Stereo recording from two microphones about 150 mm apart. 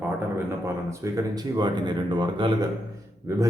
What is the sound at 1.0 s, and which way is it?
A man's voice, 25° right (ahead or behind).